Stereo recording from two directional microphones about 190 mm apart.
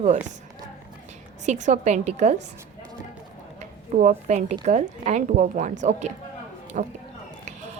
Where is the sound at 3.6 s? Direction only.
40° right (ahead or behind).